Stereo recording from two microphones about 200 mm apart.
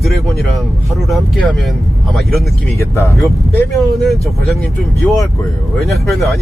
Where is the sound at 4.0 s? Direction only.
Centre (ahead or behind).